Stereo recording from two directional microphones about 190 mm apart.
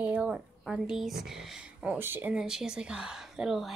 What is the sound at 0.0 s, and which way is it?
A woman's voice, 5° right (ahead or behind).